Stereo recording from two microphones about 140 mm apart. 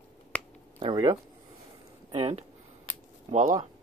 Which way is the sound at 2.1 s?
40° right (ahead or behind).